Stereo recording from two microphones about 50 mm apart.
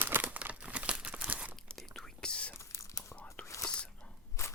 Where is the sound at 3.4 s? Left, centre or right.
Left.